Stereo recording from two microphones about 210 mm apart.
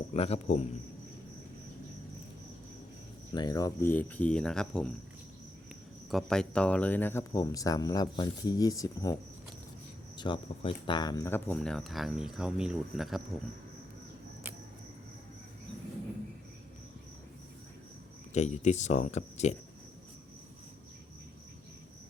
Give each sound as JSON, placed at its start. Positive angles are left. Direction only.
{"t": 0.1, "sound": "a man's voice", "side_deg": 30}
{"t": 3.3, "sound": "speech", "side_deg": 20}
{"t": 6.1, "sound": "speech", "side_deg": 0}
{"t": 10.2, "sound": "speech", "side_deg": 20}
{"t": 18.3, "sound": "speech", "side_deg": 35}